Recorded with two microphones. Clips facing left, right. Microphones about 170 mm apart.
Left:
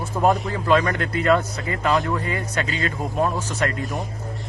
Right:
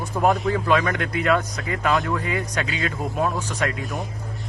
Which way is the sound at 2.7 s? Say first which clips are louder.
Left 1 dB; centre (ahead or behind).